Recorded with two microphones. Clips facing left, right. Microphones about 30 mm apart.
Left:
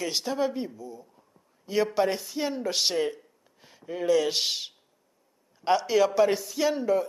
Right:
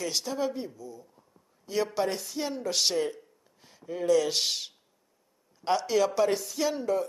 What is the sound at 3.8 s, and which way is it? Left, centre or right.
Speech, centre.